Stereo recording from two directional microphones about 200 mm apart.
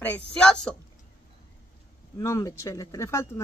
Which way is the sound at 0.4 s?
5° left (ahead or behind).